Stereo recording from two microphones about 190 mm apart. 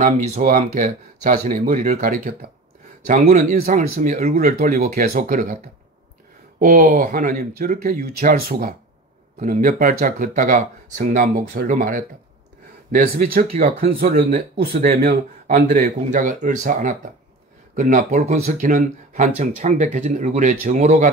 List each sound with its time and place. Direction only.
0.0 s speech: 40° right (ahead or behind)
6.6 s speech: 45° right (ahead or behind)
15.5 s speech: 40° right (ahead or behind)